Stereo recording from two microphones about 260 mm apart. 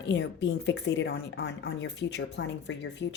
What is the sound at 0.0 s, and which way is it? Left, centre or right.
Speech, left.